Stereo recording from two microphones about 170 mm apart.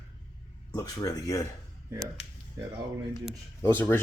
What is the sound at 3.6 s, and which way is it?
Speech, 10° left (ahead or behind).